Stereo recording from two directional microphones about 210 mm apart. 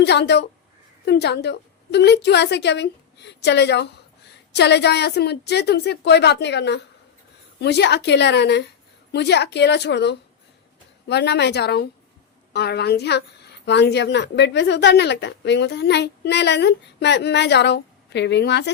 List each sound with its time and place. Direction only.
0.0 s a woman's voice: 55° left (ahead or behind)